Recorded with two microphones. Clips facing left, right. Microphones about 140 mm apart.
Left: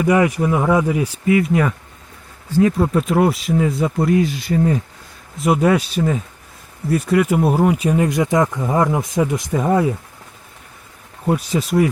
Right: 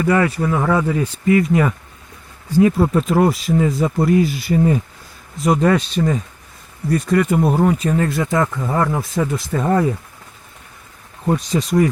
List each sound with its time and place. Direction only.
0.0 s speech: 15° left (ahead or behind); by 4.8 s 5° right (ahead or behind)
5.4 s speech: 10° left (ahead or behind)
11.3 s speech: 5° left (ahead or behind)